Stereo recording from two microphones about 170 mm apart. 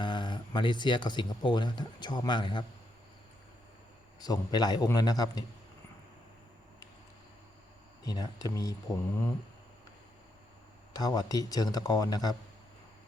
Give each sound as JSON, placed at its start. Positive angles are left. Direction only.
{"t": 0.0, "sound": "speech", "side_deg": 25}
{"t": 4.2, "sound": "a man's voice", "side_deg": 25}
{"t": 8.0, "sound": "a man's voice", "side_deg": 20}
{"t": 10.9, "sound": "a man's voice", "side_deg": 20}